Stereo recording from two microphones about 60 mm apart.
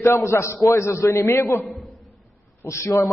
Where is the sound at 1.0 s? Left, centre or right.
Left.